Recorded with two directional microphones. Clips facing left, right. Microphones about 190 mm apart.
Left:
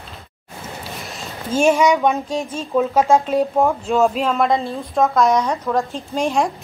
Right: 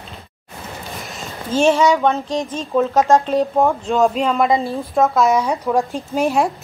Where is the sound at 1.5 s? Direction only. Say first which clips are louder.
Right 1 dB; 10° left (ahead or behind); by 6.5 s 5° right (ahead or behind).